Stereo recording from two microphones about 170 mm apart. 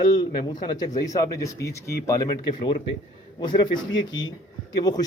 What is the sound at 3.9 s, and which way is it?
Speech, 90° left.